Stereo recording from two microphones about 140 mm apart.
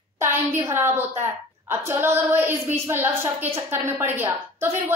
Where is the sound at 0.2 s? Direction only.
20° right (ahead or behind).